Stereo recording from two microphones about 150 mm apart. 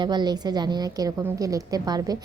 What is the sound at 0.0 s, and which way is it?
A woman's voice, 30° right (ahead or behind).